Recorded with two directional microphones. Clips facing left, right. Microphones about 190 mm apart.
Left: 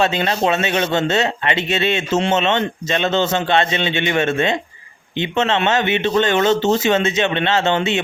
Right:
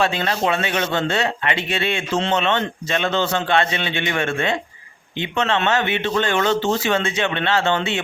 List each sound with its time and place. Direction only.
0.0 s a man's voice: 20° left (ahead or behind)